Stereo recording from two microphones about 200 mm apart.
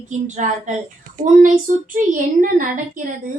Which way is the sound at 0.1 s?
35° right (ahead or behind).